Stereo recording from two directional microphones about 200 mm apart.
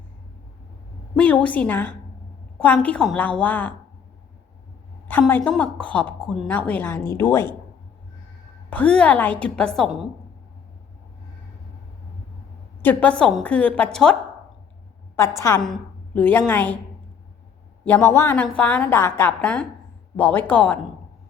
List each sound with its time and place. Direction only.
1.1 s a woman's voice: 5° left (ahead or behind)
5.0 s a woman's voice: 10° left (ahead or behind)
8.7 s a woman's voice: 5° left (ahead or behind)
12.8 s a woman's voice: 10° left (ahead or behind)
15.4 s a woman's voice: 15° left (ahead or behind)
17.8 s a woman's voice: 10° left (ahead or behind)